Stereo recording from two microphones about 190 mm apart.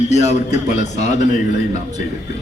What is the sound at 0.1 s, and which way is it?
Speech, 35° left (ahead or behind).